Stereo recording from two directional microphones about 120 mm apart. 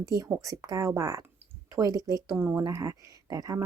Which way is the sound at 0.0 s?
30° right (ahead or behind).